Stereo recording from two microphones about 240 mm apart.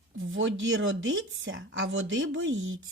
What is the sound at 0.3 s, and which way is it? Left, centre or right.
Speech, right.